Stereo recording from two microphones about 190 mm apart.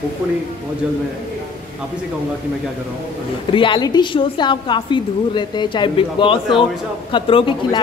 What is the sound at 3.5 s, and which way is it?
A woman's voice, 25° left (ahead or behind).